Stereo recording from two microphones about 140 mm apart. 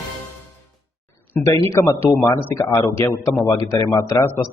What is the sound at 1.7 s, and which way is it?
Speech, 20° left (ahead or behind).